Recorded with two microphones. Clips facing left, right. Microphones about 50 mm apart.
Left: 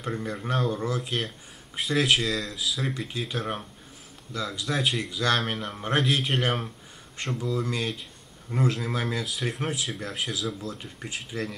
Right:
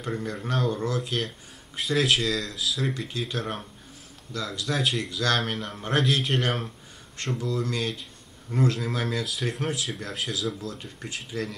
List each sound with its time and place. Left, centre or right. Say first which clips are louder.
0.1 s speech: even; centre
4.3 s speech: left 1 dB; centre
4.7 s speech: even; centre